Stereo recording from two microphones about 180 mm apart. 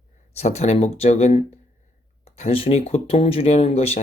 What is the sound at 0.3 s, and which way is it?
Speech, 35° left (ahead or behind).